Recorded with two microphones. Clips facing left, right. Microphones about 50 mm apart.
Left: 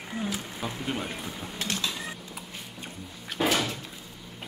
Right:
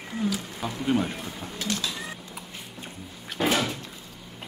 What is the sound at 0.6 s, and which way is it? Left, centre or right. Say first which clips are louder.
Speech: right 7 dB; centre.